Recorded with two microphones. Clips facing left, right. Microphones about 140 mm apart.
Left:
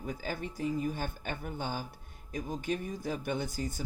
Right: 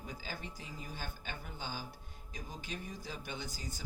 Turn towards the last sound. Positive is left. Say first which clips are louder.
# left 10 dB
turn(degrees=55)  # may be behind; listen again after turning